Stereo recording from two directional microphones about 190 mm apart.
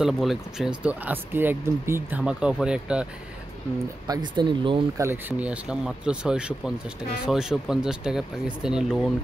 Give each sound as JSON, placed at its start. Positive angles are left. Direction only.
{"t": 0.0, "sound": "speech", "side_deg": 0}
{"t": 4.1, "sound": "speech", "side_deg": -25}
{"t": 5.0, "sound": "speech", "side_deg": -10}